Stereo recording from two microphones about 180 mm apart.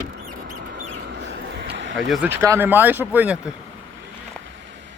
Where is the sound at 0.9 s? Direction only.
80° right.